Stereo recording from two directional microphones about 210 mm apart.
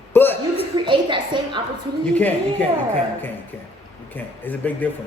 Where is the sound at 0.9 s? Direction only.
20° right (ahead or behind).